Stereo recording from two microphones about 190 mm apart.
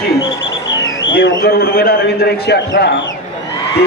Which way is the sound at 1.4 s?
55° left (ahead or behind).